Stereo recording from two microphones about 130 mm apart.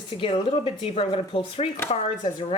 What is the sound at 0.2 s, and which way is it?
Speech, 45° left (ahead or behind).